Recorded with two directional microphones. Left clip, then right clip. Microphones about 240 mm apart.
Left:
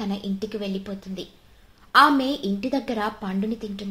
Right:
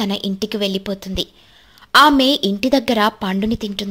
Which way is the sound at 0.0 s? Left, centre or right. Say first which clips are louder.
Right 8 dB; right.